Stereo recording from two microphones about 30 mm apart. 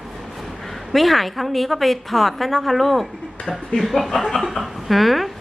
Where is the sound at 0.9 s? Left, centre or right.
Centre.